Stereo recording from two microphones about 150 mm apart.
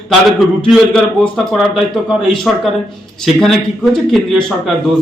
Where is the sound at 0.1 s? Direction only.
Centre (ahead or behind).